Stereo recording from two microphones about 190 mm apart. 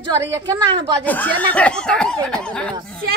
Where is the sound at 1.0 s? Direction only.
10° left (ahead or behind).